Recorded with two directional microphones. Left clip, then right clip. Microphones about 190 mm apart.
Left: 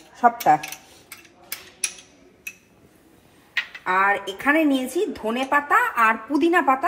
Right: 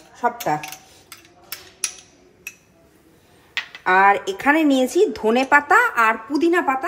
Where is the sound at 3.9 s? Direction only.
Centre (ahead or behind).